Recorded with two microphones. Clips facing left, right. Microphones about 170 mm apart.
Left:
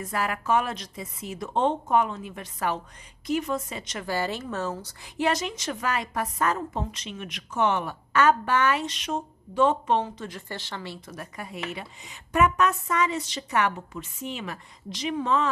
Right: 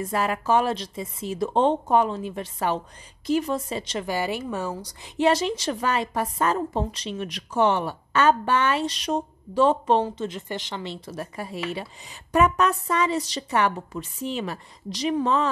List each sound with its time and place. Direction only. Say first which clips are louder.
0.0 s a woman's voice: right 4 dB; 25° right (ahead or behind)
4.0 s a woman's voice: even; 15° right (ahead or behind); by 15.5 s 35° right (ahead or behind)